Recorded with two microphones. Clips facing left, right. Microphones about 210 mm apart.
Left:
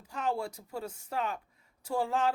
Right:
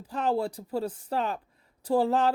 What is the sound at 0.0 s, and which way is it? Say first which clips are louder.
Speech: right 6 dB; 35° right (ahead or behind).